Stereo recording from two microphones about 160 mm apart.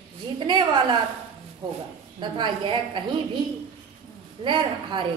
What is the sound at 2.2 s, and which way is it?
Speech, 30° right (ahead or behind).